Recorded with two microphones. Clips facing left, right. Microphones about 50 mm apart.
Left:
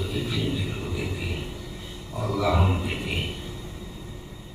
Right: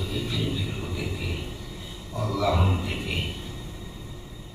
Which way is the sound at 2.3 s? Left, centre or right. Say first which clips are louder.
Left 1 dB; centre.